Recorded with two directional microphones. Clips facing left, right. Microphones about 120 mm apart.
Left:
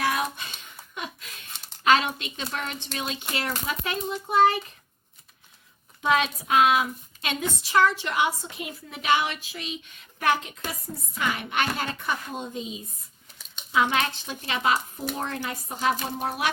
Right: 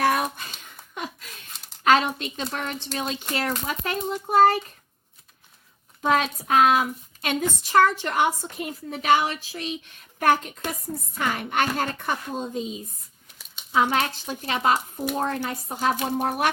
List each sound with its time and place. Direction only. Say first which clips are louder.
0.0 s a sound: right 4 dB; 50° right (ahead or behind)
1.8 s speech: right 2 dB; 40° right (ahead or behind)
6.0 s speech: right 1 dB; 40° right (ahead or behind)
13.7 s speech: right 2 dB; 35° right (ahead or behind)
16.1 s speech: right 4 dB; 50° right (ahead or behind)